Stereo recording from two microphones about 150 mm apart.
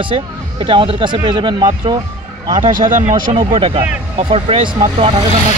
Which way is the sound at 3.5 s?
35° right (ahead or behind).